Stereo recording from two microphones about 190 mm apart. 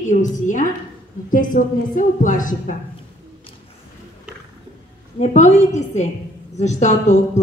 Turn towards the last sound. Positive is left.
turn(degrees=35)  # may be behind; listen again after turning